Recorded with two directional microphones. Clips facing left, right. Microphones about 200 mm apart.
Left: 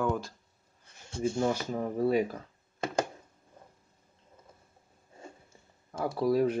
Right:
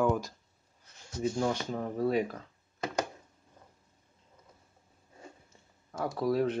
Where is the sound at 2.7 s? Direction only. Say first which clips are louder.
Left 2 dB; 25° left (ahead or behind).